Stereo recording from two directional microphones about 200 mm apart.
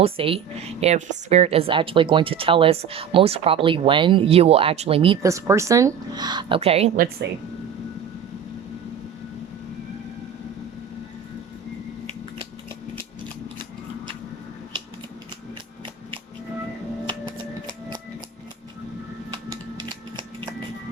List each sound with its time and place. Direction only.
0.0 s a woman's voice: 30° right (ahead or behind)
5.2 s a woman's voice: 15° right (ahead or behind); by 7.0 s 30° right (ahead or behind)
19.5 s scissors: 20° right (ahead or behind)